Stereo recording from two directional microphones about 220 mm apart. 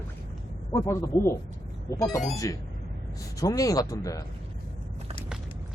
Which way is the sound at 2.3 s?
15° left (ahead or behind).